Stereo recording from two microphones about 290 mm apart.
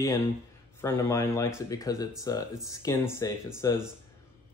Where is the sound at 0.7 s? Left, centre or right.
Centre.